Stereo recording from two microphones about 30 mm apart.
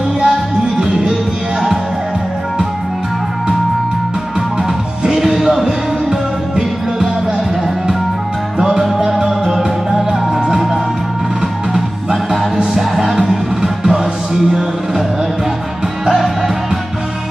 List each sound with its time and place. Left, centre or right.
0.3 s music: centre
5.0 s music: centre
8.5 s music: centre
13.6 s music: right